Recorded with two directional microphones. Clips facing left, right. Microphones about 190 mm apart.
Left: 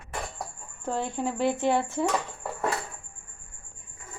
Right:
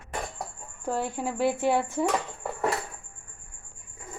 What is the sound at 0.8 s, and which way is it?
Speech, 10° right (ahead or behind).